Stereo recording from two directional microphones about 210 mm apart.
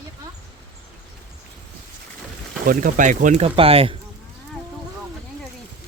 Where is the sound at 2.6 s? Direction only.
40° right (ahead or behind).